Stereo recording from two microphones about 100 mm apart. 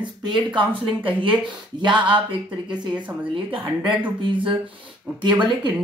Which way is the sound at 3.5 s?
60° right (ahead or behind).